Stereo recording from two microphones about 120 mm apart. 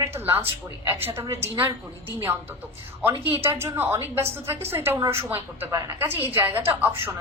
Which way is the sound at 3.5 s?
20° right (ahead or behind).